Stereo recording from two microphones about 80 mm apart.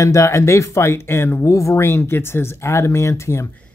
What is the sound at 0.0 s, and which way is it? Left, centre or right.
Speech, left.